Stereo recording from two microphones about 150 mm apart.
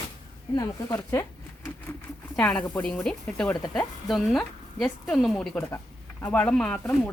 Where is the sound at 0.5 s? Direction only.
25° left (ahead or behind).